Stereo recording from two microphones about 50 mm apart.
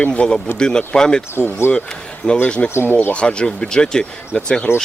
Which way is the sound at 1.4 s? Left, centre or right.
Left.